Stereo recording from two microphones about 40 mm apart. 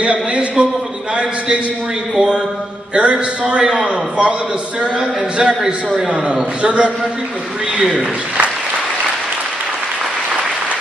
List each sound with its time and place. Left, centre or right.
0.0 s a man's voice: right
2.1 s a sound: centre
2.9 s a man's voice: right
5.4 s a man's voice: right